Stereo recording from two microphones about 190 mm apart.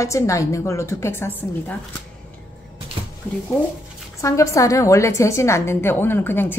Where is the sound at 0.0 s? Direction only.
15° left (ahead or behind).